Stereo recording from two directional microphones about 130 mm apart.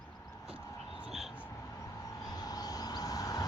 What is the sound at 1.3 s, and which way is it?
Vehicle, 20° left (ahead or behind).